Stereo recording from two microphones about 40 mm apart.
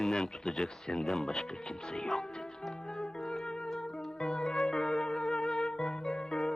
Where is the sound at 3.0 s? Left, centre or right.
Centre.